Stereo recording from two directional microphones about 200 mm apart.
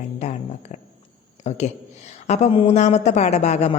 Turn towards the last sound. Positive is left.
turn(degrees=35)  # may be behind; listen again after turning